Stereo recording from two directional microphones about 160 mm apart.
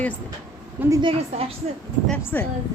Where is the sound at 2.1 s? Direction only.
10° left (ahead or behind).